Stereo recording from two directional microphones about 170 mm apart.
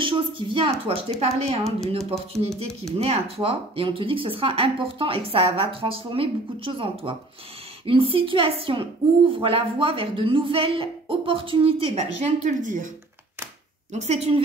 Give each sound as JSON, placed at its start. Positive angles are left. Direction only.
{"t": 0.0, "sound": "a woman's voice", "side_deg": -30}
{"t": 13.9, "sound": "speech", "side_deg": -40}